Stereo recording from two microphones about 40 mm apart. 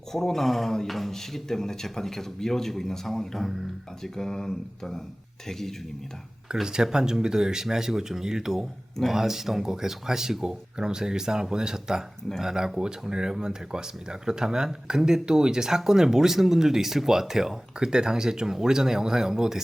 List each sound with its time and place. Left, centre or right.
0.1 s speech: centre
4.0 s speech: centre
6.5 s speech: centre